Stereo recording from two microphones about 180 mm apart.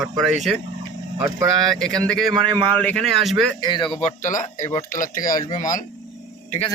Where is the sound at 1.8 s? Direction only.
5° left (ahead or behind).